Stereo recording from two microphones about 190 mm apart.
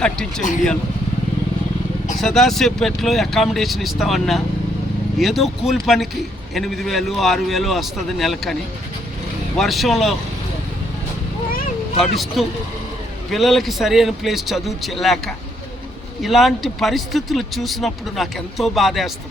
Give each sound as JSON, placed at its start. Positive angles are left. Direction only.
{"t": 0.0, "sound": "speech", "side_deg": 5}
{"t": 2.2, "sound": "speech", "side_deg": 0}
{"t": 9.6, "sound": "speech", "side_deg": 0}
{"t": 11.9, "sound": "speech", "side_deg": 0}
{"t": 16.2, "sound": "speech", "side_deg": 0}